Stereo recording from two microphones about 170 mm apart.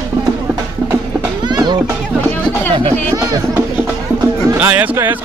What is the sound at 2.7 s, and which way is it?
Speech, 25° right (ahead or behind).